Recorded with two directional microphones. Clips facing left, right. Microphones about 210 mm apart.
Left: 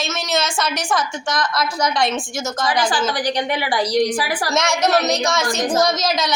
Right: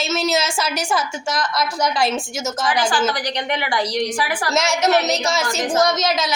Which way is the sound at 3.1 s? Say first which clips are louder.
Left 3 dB; 35° left (ahead or behind).